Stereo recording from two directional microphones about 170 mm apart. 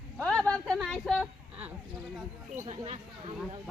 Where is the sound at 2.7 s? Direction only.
35° right (ahead or behind).